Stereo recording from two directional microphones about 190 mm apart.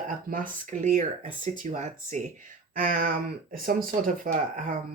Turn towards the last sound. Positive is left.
turn(degrees=-45)  # may be behind; listen again after turning